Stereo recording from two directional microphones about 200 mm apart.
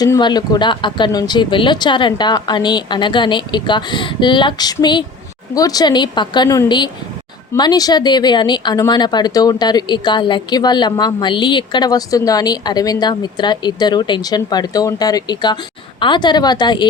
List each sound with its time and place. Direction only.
0.0 s speech: 20° left (ahead or behind)